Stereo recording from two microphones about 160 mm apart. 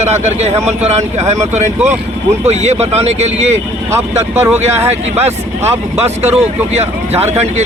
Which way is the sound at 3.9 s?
15° right (ahead or behind).